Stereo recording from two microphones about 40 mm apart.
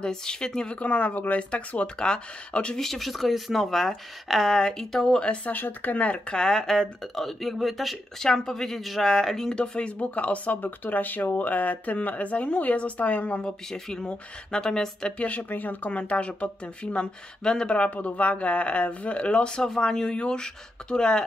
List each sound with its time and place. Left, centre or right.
0.0 s speech: centre
0.7 s speech: left
2.0 s speech: left
2.7 s speech: centre
5.4 s speech: left
6.3 s speech: centre
8.2 s speech: centre
9.6 s speech: left
13.4 s speech: centre
15.1 s speech: left
15.9 s speech: left